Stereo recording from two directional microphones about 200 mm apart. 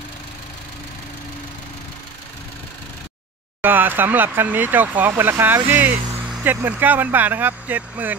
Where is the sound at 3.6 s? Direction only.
10° right (ahead or behind).